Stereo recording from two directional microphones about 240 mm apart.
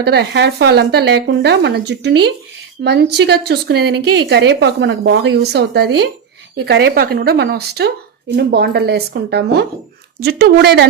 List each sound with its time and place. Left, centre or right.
0.0 s a woman's voice: right